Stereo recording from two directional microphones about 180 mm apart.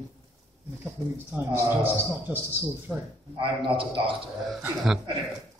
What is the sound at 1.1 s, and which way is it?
Speech, 10° right (ahead or behind).